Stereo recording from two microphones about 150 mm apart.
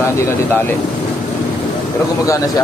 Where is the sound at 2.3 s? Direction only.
20° left (ahead or behind).